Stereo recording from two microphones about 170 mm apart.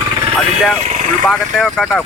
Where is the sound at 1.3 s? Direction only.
Centre (ahead or behind).